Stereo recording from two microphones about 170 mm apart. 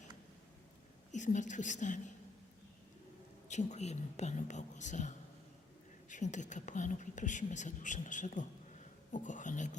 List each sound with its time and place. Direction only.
1.1 s speech: 45° left (ahead or behind)
3.5 s speech: 45° left (ahead or behind)